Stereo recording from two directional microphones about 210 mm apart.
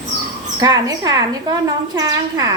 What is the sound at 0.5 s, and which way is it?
A woman's voice, 15° right (ahead or behind).